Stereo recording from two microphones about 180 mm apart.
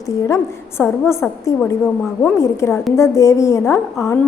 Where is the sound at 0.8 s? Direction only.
15° left (ahead or behind).